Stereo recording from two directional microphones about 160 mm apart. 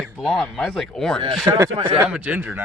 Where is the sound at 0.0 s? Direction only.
5° right (ahead or behind).